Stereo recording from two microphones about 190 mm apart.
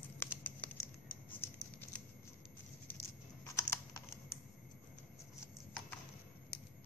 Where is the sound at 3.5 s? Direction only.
15° left (ahead or behind).